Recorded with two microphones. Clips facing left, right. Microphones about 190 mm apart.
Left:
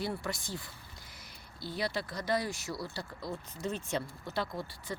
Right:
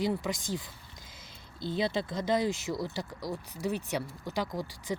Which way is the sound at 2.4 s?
90° right.